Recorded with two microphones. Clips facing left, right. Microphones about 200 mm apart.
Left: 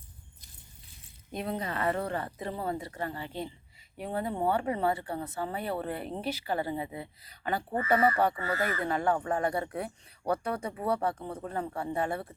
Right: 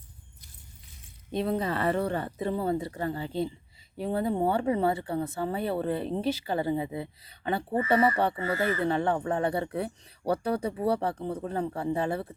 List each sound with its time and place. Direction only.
1.3 s speech: 30° right (ahead or behind)